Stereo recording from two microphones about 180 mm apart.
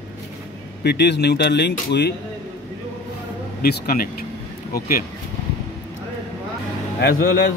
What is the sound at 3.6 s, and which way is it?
Speech, 55° left (ahead or behind).